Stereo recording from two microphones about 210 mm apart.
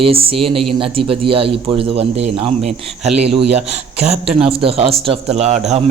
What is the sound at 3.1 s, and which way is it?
Speech, 30° right (ahead or behind).